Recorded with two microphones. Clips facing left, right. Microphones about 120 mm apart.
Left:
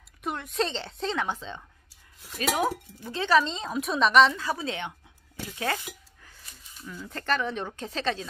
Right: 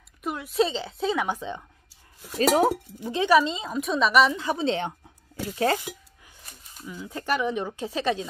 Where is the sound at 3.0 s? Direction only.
15° right (ahead or behind).